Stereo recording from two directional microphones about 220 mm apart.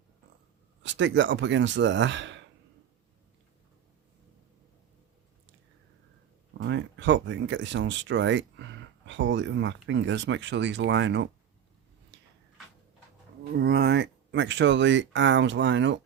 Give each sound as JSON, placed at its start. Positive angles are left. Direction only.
{"t": 0.8, "sound": "speech", "side_deg": -55}
{"t": 6.6, "sound": "speech", "side_deg": -55}
{"t": 12.1, "sound": "tick-tock", "side_deg": -55}
{"t": 13.6, "sound": "speech", "side_deg": -50}